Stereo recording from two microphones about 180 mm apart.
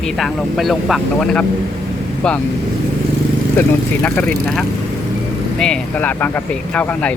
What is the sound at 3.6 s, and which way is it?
Speech, 10° left (ahead or behind).